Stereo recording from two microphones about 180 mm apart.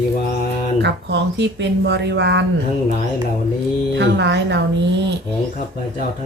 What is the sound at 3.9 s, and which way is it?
Speech, 75° right (ahead or behind).